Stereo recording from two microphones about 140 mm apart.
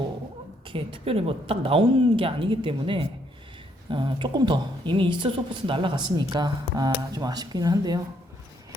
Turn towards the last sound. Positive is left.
turn(degrees=-30)  # may be behind; listen again after turning